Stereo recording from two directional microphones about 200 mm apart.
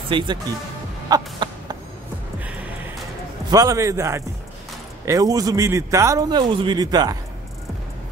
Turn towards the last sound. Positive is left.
turn(degrees=-20)  # may be behind; listen again after turning